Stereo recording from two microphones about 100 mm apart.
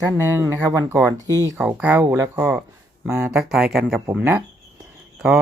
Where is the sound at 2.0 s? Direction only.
30° right (ahead or behind).